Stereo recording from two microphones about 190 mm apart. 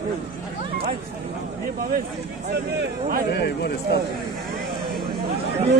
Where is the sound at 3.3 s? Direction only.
60° left (ahead or behind).